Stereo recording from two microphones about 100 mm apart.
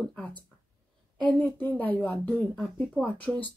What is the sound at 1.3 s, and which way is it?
Speech, 15° left (ahead or behind).